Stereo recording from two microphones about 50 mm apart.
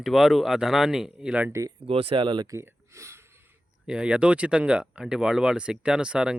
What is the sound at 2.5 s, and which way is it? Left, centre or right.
Speech, right.